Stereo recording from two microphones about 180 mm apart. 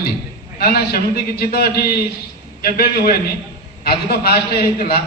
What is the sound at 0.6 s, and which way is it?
A man's voice, 55° left (ahead or behind).